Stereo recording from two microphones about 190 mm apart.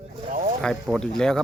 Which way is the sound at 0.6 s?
5° left (ahead or behind).